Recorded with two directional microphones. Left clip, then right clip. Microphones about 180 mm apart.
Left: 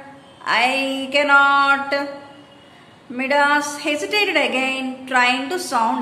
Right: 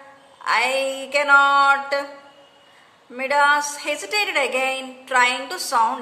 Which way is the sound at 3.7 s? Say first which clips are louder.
Left 3 dB; 30° right (ahead or behind).